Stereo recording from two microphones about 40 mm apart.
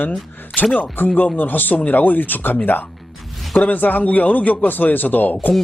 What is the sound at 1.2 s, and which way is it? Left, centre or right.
A man's voice, left.